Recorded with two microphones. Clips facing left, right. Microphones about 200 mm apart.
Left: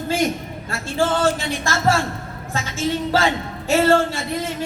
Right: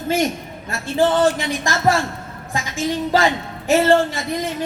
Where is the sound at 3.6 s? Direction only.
15° right (ahead or behind).